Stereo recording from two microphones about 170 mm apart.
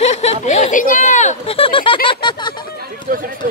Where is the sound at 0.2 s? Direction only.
40° left (ahead or behind).